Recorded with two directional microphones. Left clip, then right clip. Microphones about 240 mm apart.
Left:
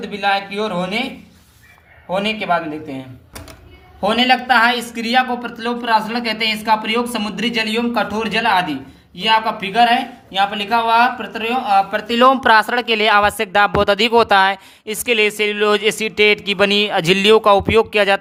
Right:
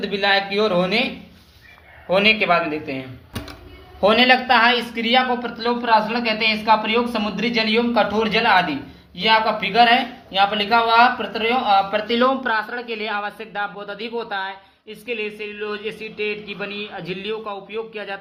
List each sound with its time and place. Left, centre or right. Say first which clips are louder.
0.0 s speech: even; centre
2.0 s a man's voice: right 3 dB; centre
4.0 s a woman's voice: even; centre; by 18.2 s left